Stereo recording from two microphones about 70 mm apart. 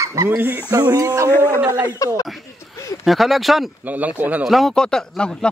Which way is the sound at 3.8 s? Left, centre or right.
Right.